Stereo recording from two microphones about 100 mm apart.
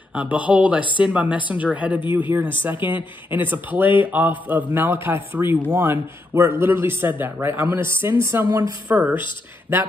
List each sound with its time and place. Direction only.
0.1 s speech: 15° right (ahead or behind)
8.5 s a woman's voice: 35° right (ahead or behind)
8.8 s speech: 15° right (ahead or behind)